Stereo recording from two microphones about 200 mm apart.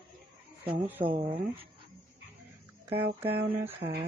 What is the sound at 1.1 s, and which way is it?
Speech, 30° right (ahead or behind).